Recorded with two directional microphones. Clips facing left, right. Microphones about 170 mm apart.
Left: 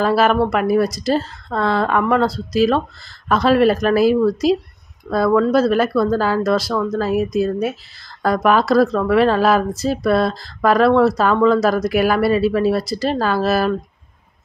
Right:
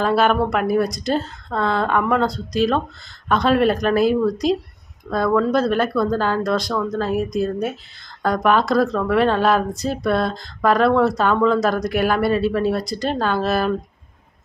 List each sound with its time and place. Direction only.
0.0 s speech: centre (ahead or behind)